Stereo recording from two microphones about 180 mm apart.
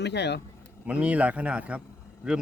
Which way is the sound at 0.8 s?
5° right (ahead or behind).